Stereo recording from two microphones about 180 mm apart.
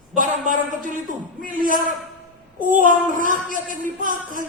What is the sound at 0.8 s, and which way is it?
A woman's voice, 45° right (ahead or behind).